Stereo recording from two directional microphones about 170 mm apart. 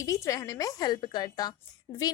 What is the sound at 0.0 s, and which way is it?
A woman's voice, 20° left (ahead or behind).